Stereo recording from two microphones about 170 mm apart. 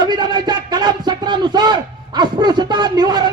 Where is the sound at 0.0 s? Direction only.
25° right (ahead or behind).